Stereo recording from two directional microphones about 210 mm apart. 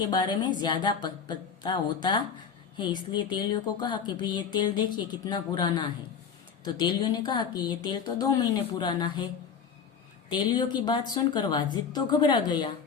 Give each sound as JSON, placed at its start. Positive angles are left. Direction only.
{"t": 0.1, "sound": "speech", "side_deg": 20}